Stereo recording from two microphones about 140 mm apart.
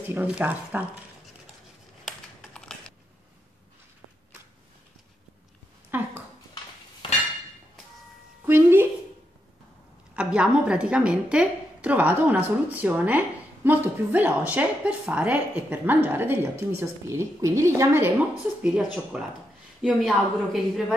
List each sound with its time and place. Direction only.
0.1 s a woman's voice: 10° right (ahead or behind)
2.0 s typing: 5° left (ahead or behind)
5.9 s a sound: 15° right (ahead or behind)
8.5 s music: 15° right (ahead or behind)
10.1 s a woman's voice: 5° right (ahead or behind)
18.6 s a woman's voice: 5° right (ahead or behind)